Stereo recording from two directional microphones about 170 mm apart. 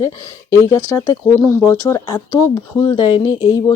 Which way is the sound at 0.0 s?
15° left (ahead or behind).